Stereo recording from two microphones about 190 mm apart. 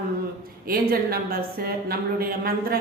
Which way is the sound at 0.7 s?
50° right (ahead or behind).